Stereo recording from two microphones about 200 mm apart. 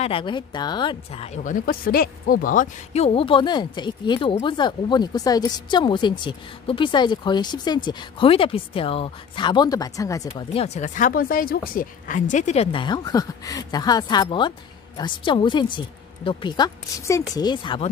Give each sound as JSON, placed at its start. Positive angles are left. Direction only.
{"t": 0.0, "sound": "a woman's voice", "side_deg": 25}
{"t": 10.5, "sound": "a woman's voice", "side_deg": 30}